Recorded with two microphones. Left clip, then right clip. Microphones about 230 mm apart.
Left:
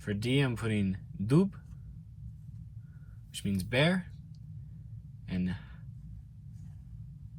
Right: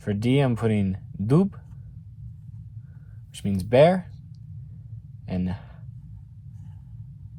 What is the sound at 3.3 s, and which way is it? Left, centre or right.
Speech, right.